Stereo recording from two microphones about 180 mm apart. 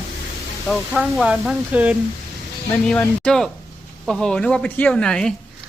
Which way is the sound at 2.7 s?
5° left (ahead or behind).